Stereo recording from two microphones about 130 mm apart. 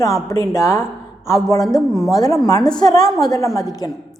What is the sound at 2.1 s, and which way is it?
Speech, 25° left (ahead or behind).